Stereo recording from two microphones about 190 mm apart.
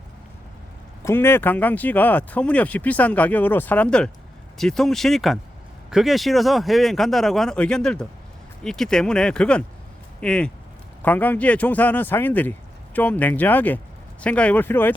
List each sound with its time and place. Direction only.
1.0 s speech: 10° left (ahead or behind)